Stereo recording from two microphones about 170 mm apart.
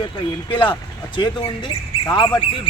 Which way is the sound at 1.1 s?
30° left (ahead or behind).